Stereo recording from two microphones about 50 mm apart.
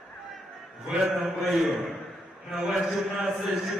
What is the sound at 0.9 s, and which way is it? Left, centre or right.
Speech, centre.